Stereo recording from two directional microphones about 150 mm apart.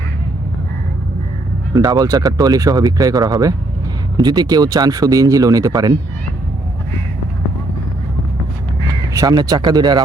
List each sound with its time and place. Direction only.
1.7 s speech: 25° right (ahead or behind)
9.1 s speech: 25° right (ahead or behind)